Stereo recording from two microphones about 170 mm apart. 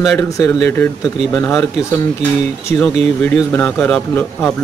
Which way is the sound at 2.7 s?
15° left (ahead or behind).